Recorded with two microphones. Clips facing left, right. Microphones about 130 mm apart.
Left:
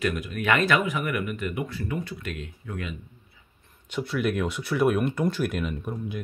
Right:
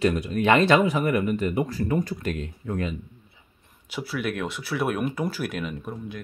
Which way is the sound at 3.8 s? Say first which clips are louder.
Left 2 dB; 5° right (ahead or behind).